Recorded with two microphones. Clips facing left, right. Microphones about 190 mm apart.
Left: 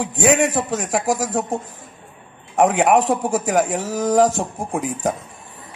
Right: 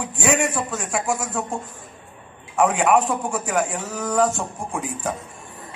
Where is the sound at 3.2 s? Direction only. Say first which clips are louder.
Left 5 dB; 40° left (ahead or behind).